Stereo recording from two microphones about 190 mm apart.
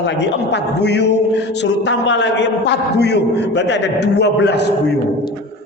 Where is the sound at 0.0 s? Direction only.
65° left (ahead or behind).